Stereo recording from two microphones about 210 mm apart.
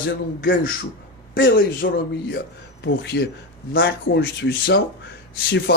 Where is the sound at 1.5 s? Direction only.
45° left (ahead or behind).